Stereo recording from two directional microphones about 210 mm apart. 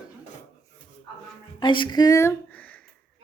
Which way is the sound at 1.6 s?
25° left (ahead or behind).